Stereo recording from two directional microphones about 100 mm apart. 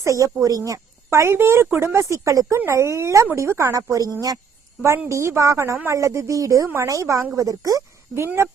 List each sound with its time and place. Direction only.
0.0 s speech: 30° right (ahead or behind)